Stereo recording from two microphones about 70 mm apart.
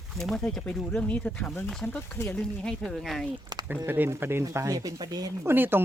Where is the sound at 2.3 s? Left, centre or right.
Centre.